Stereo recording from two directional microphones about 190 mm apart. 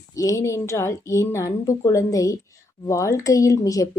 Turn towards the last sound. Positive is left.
turn(degrees=20)  # may be behind; listen again after turning